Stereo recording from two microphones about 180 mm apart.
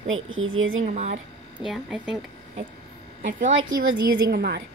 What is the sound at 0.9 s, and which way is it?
Speech, 40° right (ahead or behind).